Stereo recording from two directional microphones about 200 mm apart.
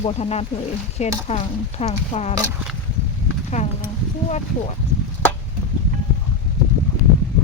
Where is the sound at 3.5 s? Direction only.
35° left (ahead or behind).